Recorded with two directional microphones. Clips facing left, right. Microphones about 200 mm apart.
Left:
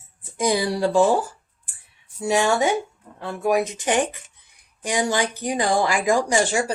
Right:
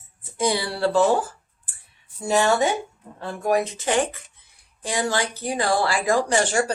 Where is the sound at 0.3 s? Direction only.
15° left (ahead or behind).